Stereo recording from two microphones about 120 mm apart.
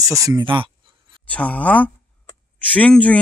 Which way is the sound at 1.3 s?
10° left (ahead or behind).